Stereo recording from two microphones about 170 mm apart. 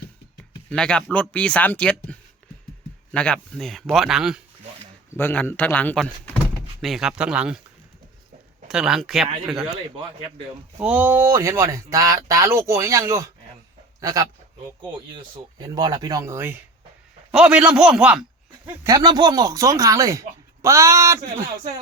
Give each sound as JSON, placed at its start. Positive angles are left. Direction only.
{"t": 0.7, "sound": "speech", "side_deg": 5}
{"t": 5.1, "sound": "speech", "side_deg": 10}
{"t": 6.8, "sound": "speech", "side_deg": 0}
{"t": 8.6, "sound": "speech", "side_deg": -5}
{"t": 10.8, "sound": "speech", "side_deg": -10}
{"t": 18.6, "sound": "speech", "side_deg": -20}